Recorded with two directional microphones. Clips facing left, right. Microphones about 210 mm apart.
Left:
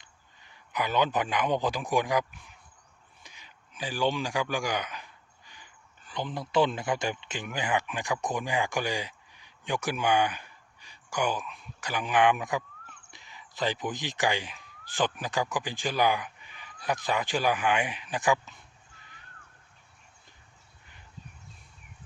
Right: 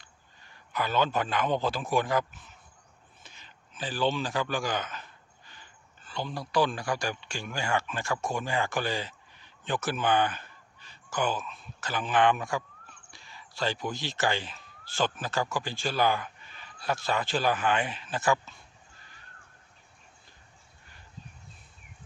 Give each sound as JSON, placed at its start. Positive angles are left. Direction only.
{"t": 0.0, "sound": "a man's voice", "side_deg": 15}